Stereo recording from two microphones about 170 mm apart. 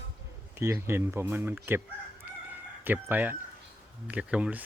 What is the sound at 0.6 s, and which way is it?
Speech, 15° right (ahead or behind).